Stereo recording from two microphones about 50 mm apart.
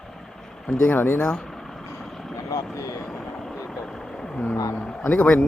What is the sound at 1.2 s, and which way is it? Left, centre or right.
Speech, centre.